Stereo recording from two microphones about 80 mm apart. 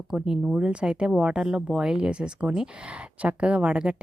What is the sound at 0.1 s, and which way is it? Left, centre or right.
Speech, centre.